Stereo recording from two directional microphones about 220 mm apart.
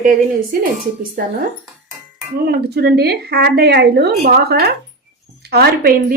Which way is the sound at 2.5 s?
50° right (ahead or behind).